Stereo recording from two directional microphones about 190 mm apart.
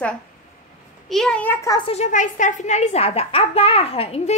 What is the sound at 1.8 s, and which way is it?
A child's voice, 35° left (ahead or behind).